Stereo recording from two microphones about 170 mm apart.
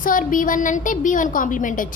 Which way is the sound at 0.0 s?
55° left (ahead or behind).